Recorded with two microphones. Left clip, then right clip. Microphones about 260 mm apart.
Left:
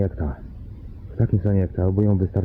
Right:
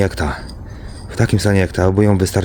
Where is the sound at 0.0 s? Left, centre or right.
Centre.